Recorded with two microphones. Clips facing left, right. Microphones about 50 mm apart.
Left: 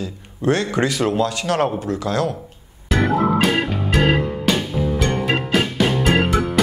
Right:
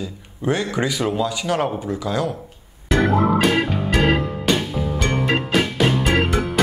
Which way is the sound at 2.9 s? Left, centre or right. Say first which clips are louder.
Even; centre.